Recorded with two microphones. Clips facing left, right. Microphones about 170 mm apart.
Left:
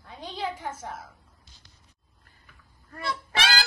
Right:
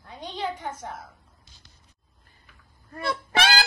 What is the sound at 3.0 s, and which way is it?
Music, 50° right (ahead or behind).